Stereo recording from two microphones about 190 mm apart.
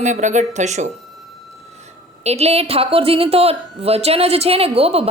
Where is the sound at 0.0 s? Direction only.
40° right (ahead or behind).